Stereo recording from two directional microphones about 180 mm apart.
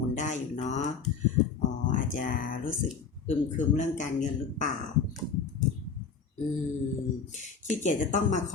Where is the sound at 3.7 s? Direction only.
45° left (ahead or behind).